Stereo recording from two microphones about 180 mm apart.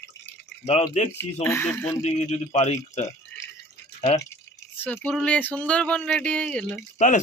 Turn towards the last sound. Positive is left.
turn(degrees=40)  # may be behind; listen again after turning